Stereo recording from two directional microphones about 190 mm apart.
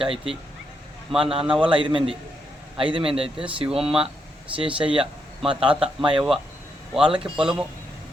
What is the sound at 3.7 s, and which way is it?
Speech, 5° right (ahead or behind).